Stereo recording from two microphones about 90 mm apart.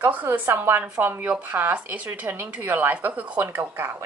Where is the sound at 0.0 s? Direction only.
20° right (ahead or behind).